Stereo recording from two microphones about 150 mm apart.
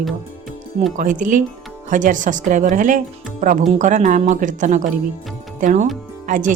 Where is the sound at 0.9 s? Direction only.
65° right (ahead or behind).